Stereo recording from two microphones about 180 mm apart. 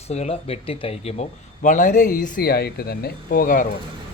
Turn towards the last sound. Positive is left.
turn(degrees=50)  # may be behind; listen again after turning